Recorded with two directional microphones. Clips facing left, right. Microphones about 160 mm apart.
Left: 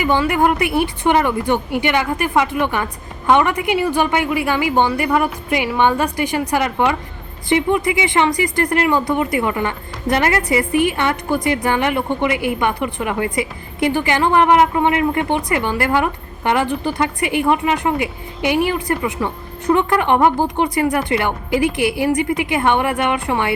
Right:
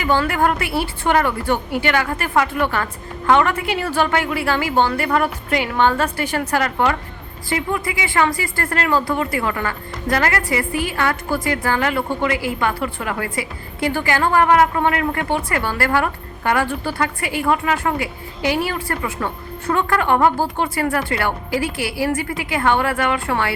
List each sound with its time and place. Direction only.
0.0 s a woman's voice: 15° left (ahead or behind)